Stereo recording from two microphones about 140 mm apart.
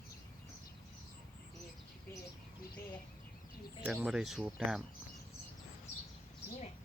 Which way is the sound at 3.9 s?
5° right (ahead or behind).